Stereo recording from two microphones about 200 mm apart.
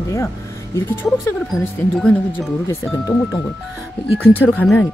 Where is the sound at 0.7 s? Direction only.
10° left (ahead or behind).